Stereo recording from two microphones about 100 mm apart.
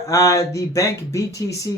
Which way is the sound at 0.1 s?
35° left (ahead or behind).